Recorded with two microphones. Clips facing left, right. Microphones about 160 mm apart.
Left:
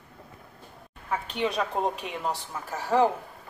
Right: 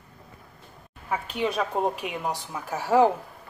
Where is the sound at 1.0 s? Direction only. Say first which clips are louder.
Right 1 dB; 5° right (ahead or behind).